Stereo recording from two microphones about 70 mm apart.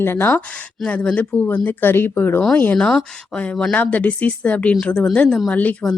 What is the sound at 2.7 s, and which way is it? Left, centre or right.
Speech, centre.